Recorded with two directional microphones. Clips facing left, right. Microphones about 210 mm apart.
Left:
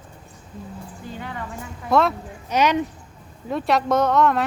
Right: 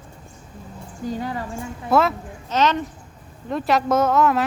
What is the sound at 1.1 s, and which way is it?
Speech, 35° right (ahead or behind).